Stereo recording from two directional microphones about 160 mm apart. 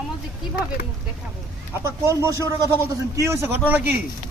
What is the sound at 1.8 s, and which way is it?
A man's voice, 15° right (ahead or behind).